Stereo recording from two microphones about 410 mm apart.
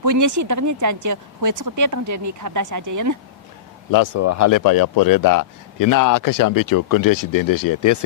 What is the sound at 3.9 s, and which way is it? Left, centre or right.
Speech, left.